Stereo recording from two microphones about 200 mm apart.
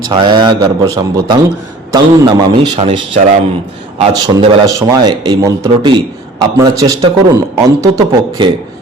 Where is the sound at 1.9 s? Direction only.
20° right (ahead or behind).